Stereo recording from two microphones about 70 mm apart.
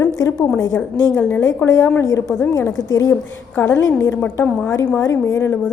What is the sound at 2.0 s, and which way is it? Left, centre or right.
Speech, left.